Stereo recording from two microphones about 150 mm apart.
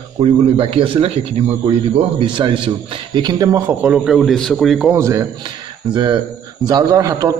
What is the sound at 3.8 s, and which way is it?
A man's voice, 5° right (ahead or behind).